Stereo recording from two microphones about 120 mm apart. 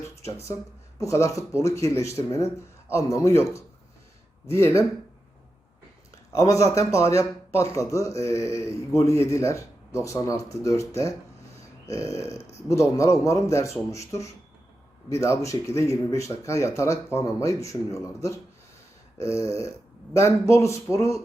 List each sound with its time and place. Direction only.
0.9 s a man's voice: 25° left (ahead or behind)
6.3 s a man's voice: 25° left (ahead or behind)
12.5 s a man's voice: 25° left (ahead or behind)